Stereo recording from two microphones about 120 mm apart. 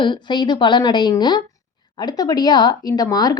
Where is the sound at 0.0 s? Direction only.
40° left (ahead or behind).